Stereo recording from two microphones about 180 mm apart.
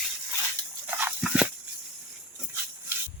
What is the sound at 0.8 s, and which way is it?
Dog, 10° right (ahead or behind).